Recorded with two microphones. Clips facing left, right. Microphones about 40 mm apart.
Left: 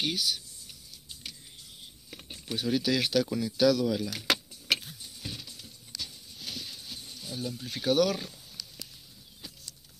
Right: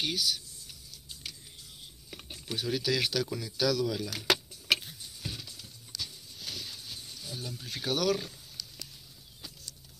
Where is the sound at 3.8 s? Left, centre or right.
Centre.